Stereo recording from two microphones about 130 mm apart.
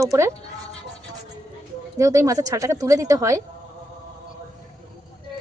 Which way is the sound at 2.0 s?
25° right (ahead or behind).